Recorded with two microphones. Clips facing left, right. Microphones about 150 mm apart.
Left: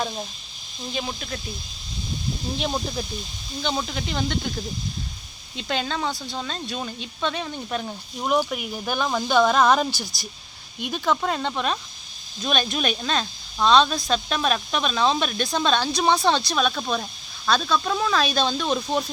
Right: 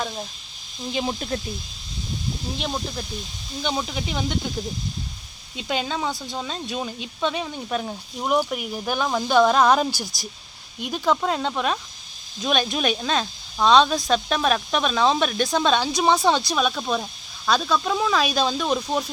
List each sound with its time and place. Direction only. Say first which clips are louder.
0.9 s speech: right 5 dB; 30° right (ahead or behind)
2.6 s speech: left 4 dB; 5° left (ahead or behind)
3.6 s speech: right 1 dB; 10° right (ahead or behind)
5.5 s speech: right 1 dB; 10° right (ahead or behind)
10.9 s speech: right 2 dB; 5° right (ahead or behind)